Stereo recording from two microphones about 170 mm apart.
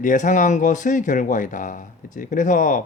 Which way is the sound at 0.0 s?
50° left (ahead or behind).